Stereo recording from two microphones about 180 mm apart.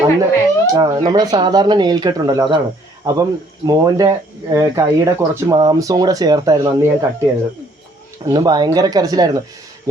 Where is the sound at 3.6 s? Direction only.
20° right (ahead or behind).